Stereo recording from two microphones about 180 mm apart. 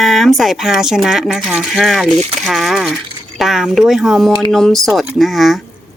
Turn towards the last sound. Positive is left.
turn(degrees=0)  # may be behind; listen again after turning